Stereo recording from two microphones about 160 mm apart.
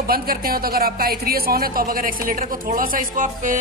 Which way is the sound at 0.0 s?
70° right (ahead or behind).